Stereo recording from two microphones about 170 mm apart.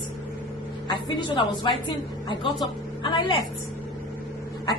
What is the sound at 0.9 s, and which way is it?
A woman's voice, 25° left (ahead or behind).